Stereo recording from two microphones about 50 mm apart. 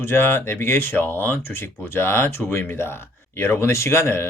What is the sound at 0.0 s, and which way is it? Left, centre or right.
Speech, left.